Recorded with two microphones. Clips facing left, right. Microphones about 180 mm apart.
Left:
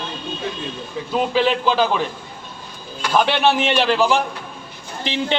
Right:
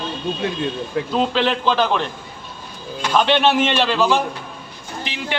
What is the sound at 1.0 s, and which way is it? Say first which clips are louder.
Speech: right 6 dB; 70° right (ahead or behind).